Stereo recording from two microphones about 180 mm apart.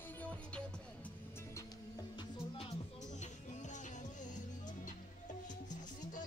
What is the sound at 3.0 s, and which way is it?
Music, 40° left (ahead or behind).